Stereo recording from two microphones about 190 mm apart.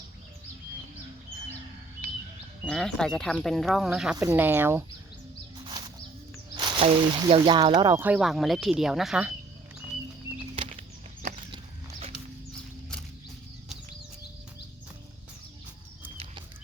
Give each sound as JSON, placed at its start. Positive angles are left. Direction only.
{"t": 2.6, "sound": "speech", "side_deg": 5}
{"t": 6.6, "sound": "speech", "side_deg": -25}
{"t": 8.0, "sound": "speech", "side_deg": -5}
{"t": 11.5, "sound": "dog", "side_deg": -30}